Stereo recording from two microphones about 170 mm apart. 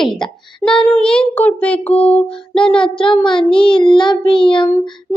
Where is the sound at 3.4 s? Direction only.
30° left (ahead or behind).